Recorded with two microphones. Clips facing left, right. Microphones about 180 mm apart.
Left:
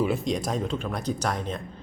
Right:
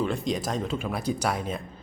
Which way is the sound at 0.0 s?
5° left (ahead or behind).